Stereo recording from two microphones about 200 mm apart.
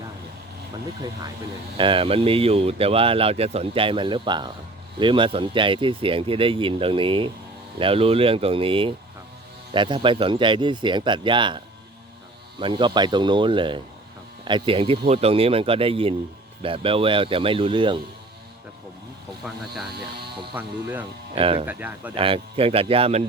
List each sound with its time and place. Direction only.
1.7 s a man's voice: 25° right (ahead or behind)
19.5 s speech: centre (ahead or behind)
21.3 s a man's voice: 30° right (ahead or behind)
21.7 s speech: 10° right (ahead or behind)
22.1 s a man's voice: 25° right (ahead or behind)